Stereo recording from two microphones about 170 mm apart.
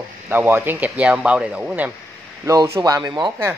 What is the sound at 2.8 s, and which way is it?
Speech, 20° right (ahead or behind).